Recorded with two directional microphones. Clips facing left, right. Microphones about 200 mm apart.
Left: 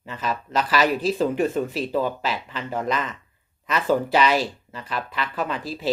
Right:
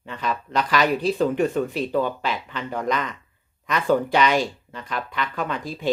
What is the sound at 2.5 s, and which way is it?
Speech, 5° left (ahead or behind).